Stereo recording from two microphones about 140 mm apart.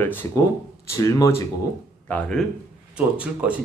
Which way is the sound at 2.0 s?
10° left (ahead or behind).